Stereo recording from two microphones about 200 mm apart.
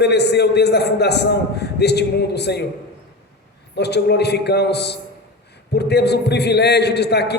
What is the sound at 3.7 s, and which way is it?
A man's voice, 55° left (ahead or behind).